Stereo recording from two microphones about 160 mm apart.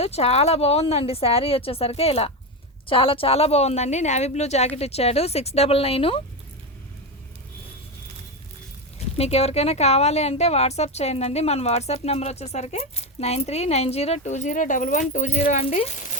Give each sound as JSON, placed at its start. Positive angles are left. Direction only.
{"t": 0.0, "sound": "a woman's voice", "side_deg": 40}
{"t": 9.1, "sound": "a woman's voice", "side_deg": 40}